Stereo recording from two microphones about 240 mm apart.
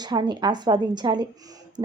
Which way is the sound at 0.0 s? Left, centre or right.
Centre.